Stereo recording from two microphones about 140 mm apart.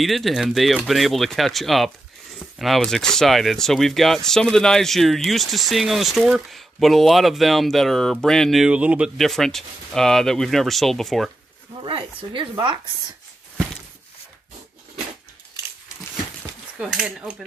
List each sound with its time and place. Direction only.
0.0 s speech: centre (ahead or behind)
11.8 s speech: 35° right (ahead or behind)
16.7 s speech: 5° right (ahead or behind)